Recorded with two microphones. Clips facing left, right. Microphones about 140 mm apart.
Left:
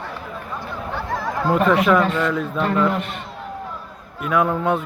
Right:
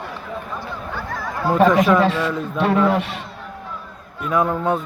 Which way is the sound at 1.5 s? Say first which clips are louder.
Right 4 dB; 35° right (ahead or behind).